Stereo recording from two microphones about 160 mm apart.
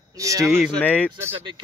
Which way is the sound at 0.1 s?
20° right (ahead or behind).